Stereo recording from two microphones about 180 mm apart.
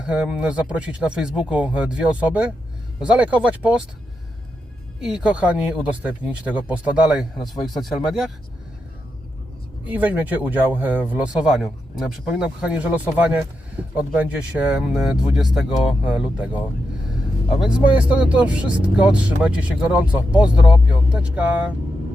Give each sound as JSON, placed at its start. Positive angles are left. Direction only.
{"t": 0.0, "sound": "speech", "side_deg": -5}
{"t": 4.9, "sound": "speech", "side_deg": -5}
{"t": 7.5, "sound": "speech", "side_deg": 20}
{"t": 7.8, "sound": "speech", "side_deg": 0}
{"t": 9.8, "sound": "speech", "side_deg": -10}